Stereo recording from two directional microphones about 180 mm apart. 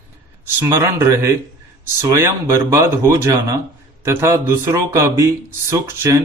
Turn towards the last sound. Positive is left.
turn(degrees=-15)  # may be behind; listen again after turning